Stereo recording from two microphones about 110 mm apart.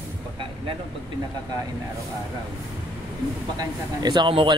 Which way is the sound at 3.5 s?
40° right (ahead or behind).